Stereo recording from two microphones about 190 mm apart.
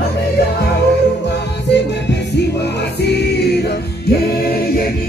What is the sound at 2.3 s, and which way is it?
Music, 60° left (ahead or behind).